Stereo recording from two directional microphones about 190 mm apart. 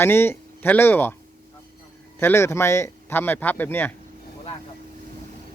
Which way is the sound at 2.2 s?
15° left (ahead or behind).